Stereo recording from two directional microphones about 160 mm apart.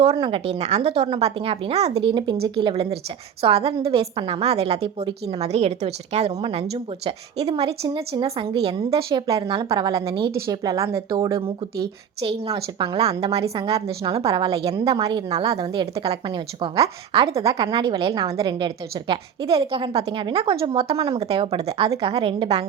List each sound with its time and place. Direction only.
0.0 s a woman's voice: 35° right (ahead or behind)
9.0 s a woman's voice: 20° right (ahead or behind)
12.8 s a woman's voice: 35° right (ahead or behind)
14.3 s a woman's voice: 25° right (ahead or behind)
17.3 s a woman's voice: 20° right (ahead or behind); by 22.6 s 35° right (ahead or behind)